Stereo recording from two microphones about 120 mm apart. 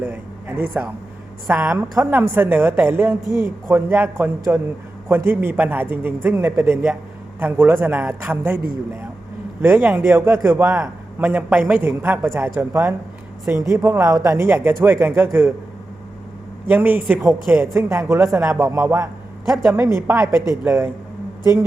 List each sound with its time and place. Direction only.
0.0 s a man's voice: 15° right (ahead or behind)
16.6 s a man's voice: 15° right (ahead or behind)
17.7 s a man's voice: 20° right (ahead or behind)